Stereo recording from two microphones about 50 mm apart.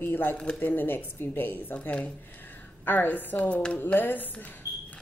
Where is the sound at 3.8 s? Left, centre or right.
Left.